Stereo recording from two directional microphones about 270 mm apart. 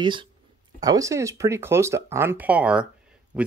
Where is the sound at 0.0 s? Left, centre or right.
Centre.